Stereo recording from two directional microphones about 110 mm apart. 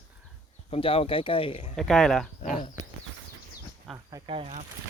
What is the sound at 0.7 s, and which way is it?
Speech, 55° left (ahead or behind).